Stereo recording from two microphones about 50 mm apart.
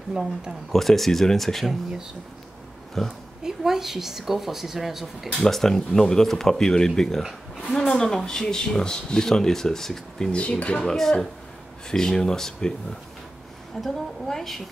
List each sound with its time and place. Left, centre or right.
0.1 s speech: centre
0.7 s speech: centre
3.0 s speech: centre
3.4 s speech: centre
5.4 s speech: centre
10.3 s speech: left
10.8 s speech: centre
13.8 s speech: centre